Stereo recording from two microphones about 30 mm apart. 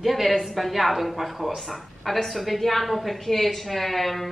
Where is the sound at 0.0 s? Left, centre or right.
Centre.